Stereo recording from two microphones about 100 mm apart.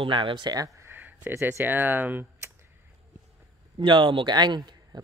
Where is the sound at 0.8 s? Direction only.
20° right (ahead or behind).